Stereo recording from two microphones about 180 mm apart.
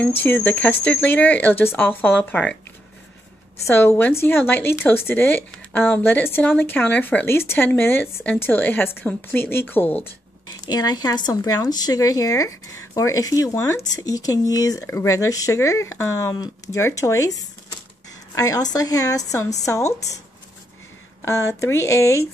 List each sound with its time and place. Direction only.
0.2 s speech: 10° left (ahead or behind)
3.7 s a woman's voice: 15° left (ahead or behind)
21.2 s speech: 15° left (ahead or behind)